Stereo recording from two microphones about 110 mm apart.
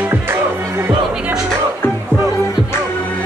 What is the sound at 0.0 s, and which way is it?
Music, 20° right (ahead or behind).